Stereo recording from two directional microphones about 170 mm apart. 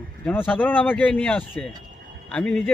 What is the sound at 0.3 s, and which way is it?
A man's voice, 10° left (ahead or behind).